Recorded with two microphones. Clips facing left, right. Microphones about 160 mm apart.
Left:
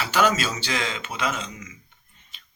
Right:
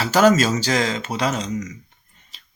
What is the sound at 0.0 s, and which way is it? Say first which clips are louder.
Speech: right 7 dB; 40° right (ahead or behind).